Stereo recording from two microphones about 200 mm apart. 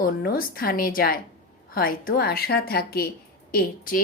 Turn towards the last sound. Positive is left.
turn(degrees=45)  # may be behind; listen again after turning